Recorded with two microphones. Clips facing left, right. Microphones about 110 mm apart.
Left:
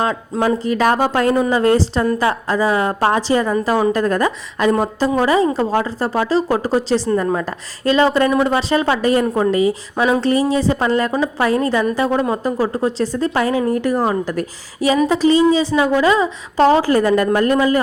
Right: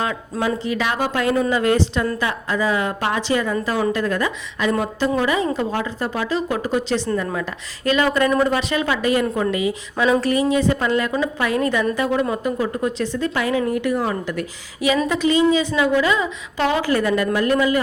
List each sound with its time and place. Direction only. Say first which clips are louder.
0.0 s speech: left 5 dB; 35° left (ahead or behind)
10.0 s speech: left 2 dB; 25° left (ahead or behind)